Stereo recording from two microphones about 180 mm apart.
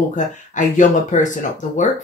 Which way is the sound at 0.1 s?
45° left (ahead or behind).